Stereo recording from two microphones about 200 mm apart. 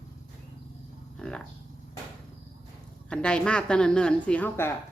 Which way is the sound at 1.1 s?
5° left (ahead or behind).